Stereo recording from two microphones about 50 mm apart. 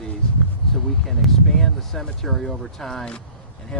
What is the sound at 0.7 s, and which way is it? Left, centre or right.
Speech, centre.